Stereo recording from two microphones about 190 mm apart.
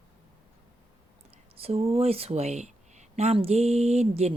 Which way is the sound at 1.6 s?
30° right (ahead or behind).